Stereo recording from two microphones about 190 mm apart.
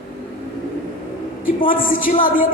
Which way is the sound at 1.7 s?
45° left (ahead or behind).